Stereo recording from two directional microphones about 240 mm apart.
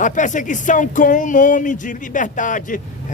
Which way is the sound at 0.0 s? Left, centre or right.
Left.